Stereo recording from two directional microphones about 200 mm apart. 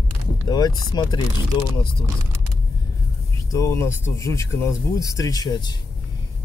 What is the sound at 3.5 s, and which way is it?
Speech, 15° left (ahead or behind).